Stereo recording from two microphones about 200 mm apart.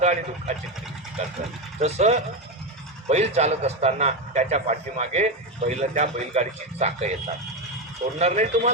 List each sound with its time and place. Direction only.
0.0 s speech: 35° right (ahead or behind)
1.8 s a man's voice: 35° right (ahead or behind)
8.2 s a man's voice: 35° right (ahead or behind)